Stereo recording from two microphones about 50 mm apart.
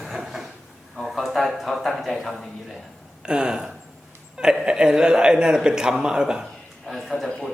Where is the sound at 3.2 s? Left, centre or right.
Centre.